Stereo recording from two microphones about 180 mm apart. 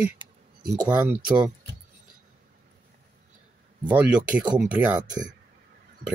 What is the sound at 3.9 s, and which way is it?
Speech, 10° right (ahead or behind).